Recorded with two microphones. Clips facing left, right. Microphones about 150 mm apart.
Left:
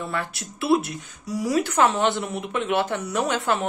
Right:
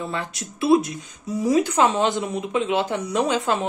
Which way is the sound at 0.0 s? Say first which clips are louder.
Even; 20° right (ahead or behind).